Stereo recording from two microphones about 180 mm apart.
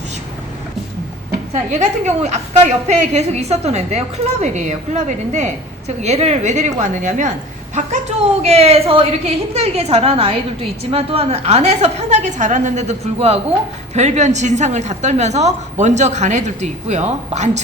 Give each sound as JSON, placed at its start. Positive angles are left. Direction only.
{"t": 1.7, "sound": "a woman's voice", "side_deg": -40}
{"t": 8.4, "sound": "a woman's voice", "side_deg": -35}